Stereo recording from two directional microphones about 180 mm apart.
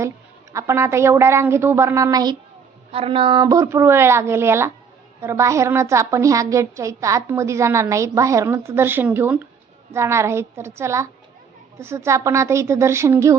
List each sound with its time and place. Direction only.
0.5 s a woman's voice: 15° right (ahead or behind)
2.9 s a woman's voice: 30° right (ahead or behind); by 13.3 s 15° right (ahead or behind)